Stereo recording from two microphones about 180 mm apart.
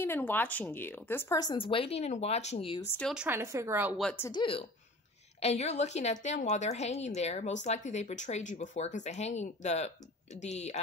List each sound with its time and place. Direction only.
0.0 s speech: 10° left (ahead or behind)
1.7 s speech: 30° left (ahead or behind)
3.1 s speech: 10° right (ahead or behind)
4.0 s speech: 10° left (ahead or behind)
4.3 s a woman's voice: 30° left (ahead or behind)